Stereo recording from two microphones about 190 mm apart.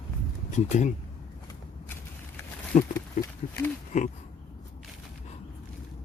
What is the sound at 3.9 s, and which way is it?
Speech, 40° left (ahead or behind).